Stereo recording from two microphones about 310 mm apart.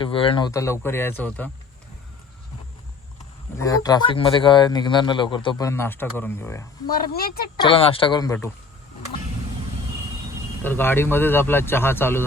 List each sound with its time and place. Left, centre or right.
0.0 s speech: centre
3.6 s speech: centre
6.9 s speech: left
7.6 s speech: centre
10.6 s speech: centre